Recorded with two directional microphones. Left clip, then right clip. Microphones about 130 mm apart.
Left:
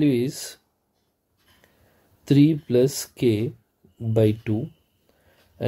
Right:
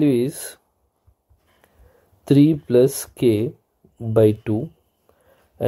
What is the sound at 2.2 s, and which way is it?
Speech, 25° right (ahead or behind).